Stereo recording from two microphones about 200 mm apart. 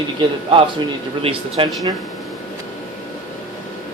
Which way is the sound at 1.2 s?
25° right (ahead or behind).